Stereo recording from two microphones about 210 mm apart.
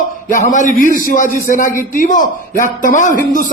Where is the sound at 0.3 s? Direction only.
40° left (ahead or behind).